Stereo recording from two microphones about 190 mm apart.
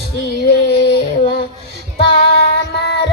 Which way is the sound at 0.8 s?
55° left (ahead or behind).